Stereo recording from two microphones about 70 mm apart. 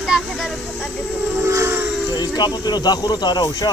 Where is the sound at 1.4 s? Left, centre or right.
Right.